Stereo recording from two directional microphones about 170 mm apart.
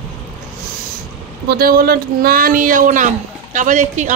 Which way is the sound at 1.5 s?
60° right (ahead or behind).